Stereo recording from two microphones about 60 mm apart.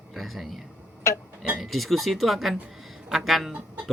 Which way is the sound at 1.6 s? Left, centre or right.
Centre.